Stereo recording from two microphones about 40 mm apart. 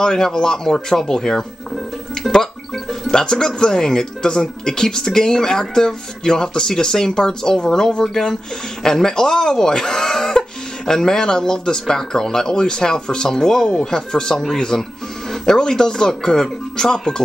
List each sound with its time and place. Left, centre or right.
0.0 s speech: centre
3.1 s speech: centre